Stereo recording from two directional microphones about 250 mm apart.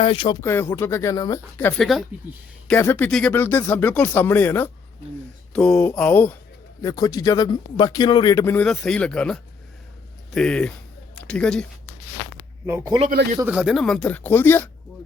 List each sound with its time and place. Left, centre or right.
0.0 s a man's voice: left; by 11.6 s centre
12.6 s speech: centre